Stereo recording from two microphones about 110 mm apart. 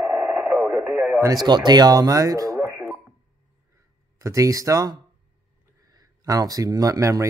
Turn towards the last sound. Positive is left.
turn(degrees=-30)  # may be behind; listen again after turning